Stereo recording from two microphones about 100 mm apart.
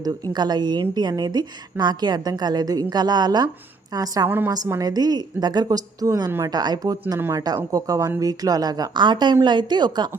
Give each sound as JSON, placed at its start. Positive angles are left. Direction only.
{"t": 0.0, "sound": "a woman's voice", "side_deg": -45}